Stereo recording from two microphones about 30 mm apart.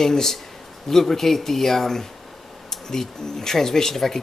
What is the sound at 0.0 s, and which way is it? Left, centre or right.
Speech, centre.